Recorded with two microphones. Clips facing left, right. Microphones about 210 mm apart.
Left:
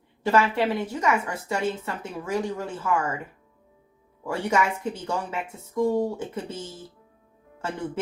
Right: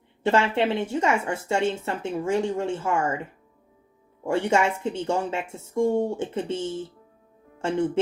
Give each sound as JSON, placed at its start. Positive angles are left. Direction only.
{"t": 0.3, "sound": "a woman's voice", "side_deg": -25}
{"t": 4.3, "sound": "a woman's voice", "side_deg": -25}